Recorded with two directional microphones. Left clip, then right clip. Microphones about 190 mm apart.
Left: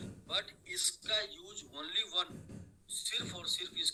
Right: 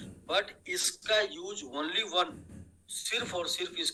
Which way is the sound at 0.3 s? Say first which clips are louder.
Right 7 dB; 55° right (ahead or behind).